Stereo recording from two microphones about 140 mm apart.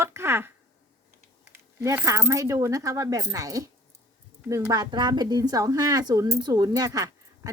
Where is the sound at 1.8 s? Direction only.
20° right (ahead or behind).